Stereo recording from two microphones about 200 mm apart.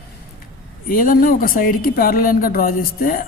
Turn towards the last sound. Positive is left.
turn(degrees=45)  # may be behind; listen again after turning